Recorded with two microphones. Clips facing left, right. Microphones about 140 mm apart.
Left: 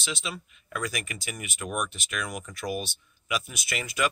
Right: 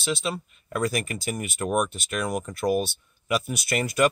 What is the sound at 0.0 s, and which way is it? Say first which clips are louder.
Speech: right 7 dB; 35° right (ahead or behind).